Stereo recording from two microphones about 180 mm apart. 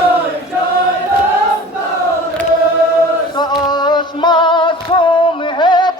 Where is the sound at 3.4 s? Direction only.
25° left (ahead or behind).